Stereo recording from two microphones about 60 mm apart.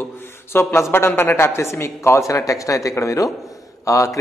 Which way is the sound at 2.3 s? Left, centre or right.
Left.